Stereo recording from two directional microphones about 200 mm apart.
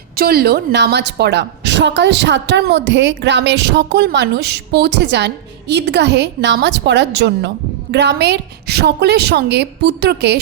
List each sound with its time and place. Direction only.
0.2 s a woman's voice: 50° right (ahead or behind)